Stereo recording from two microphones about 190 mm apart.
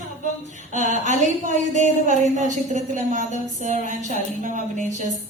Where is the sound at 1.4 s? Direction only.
40° right (ahead or behind).